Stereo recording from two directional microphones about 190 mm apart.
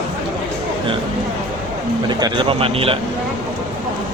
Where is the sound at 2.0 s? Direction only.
25° right (ahead or behind).